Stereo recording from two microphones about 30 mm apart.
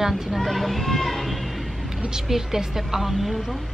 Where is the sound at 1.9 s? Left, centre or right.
Right; by 3.6 s centre.